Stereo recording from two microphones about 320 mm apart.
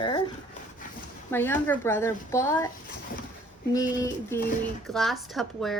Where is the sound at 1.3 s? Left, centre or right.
Centre.